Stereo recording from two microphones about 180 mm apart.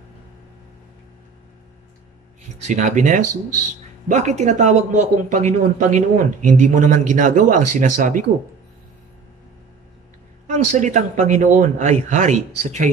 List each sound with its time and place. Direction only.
2.6 s speech: 40° right (ahead or behind)
10.4 s speech: 45° right (ahead or behind)